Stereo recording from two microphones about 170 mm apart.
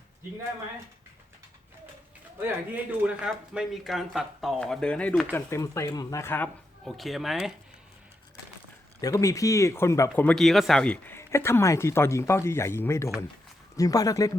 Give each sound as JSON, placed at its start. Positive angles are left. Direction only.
{"t": 2.4, "sound": "a man's voice", "side_deg": -10}
{"t": 6.8, "sound": "a man's voice", "side_deg": 0}
{"t": 9.0, "sound": "speech", "side_deg": 20}